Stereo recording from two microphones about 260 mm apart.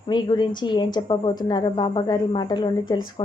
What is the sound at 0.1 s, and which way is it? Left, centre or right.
A woman's voice, centre.